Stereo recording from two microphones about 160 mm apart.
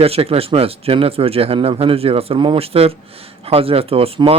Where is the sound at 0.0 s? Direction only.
40° right (ahead or behind).